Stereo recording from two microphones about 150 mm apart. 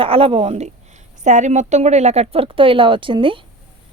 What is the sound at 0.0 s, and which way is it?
Speech, 40° right (ahead or behind).